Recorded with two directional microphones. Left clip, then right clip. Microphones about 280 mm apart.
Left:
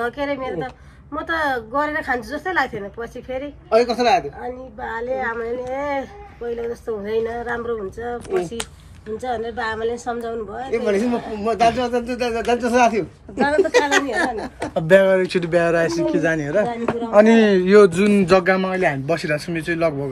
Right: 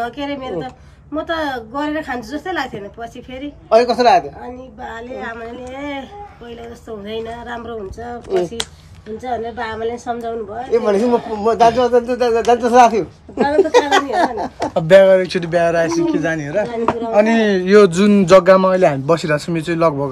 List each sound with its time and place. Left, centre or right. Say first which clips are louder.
0.0 s speech: even; centre
3.7 s speech: right 5 dB; centre
4.8 s speech: left 4 dB; centre
7.1 s speech: left 3 dB; centre
9.2 s speech: right 2 dB; centre
10.7 s speech: right 6 dB; centre
14.7 s speech: right 5 dB; centre